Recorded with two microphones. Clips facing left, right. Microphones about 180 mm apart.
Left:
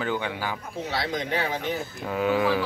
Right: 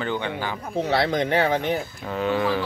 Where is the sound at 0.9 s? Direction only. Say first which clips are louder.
Right 7 dB; 60° right (ahead or behind).